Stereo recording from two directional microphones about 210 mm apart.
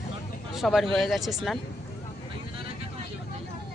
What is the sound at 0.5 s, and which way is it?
Speech, centre (ahead or behind).